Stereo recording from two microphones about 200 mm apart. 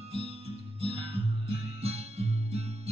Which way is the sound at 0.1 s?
30° right (ahead or behind).